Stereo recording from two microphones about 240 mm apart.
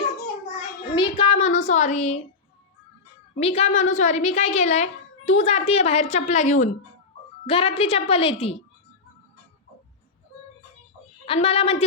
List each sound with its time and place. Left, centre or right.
0.9 s a sound: left
3.4 s a woman's voice: left
11.3 s a woman's voice: left